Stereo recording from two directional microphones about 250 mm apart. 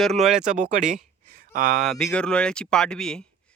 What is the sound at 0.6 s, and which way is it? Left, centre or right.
Speech, right.